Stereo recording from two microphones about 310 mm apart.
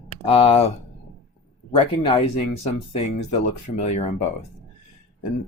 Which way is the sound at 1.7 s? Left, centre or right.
Centre.